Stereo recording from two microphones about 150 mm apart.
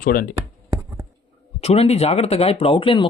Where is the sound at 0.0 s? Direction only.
85° left.